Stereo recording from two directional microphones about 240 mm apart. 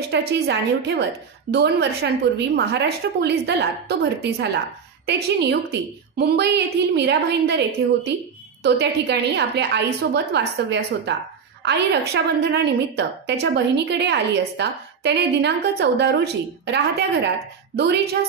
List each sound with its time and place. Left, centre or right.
0.1 s a woman's voice: right